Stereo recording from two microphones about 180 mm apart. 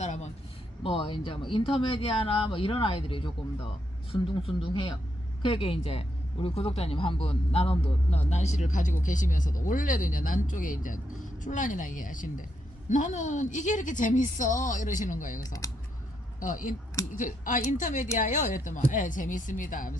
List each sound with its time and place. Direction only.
0.0 s a sound: 40° left (ahead or behind)
0.8 s speech: 30° left (ahead or behind)
4.4 s speech: 30° left (ahead or behind); by 15.4 s 45° left (ahead or behind)
15.4 s speech: 20° left (ahead or behind)
16.4 s speech: 45° left (ahead or behind)